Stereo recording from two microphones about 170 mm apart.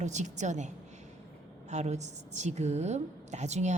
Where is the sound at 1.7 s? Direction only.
40° right (ahead or behind).